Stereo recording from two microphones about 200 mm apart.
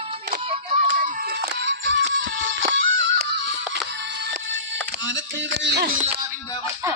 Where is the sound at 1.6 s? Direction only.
65° right (ahead or behind).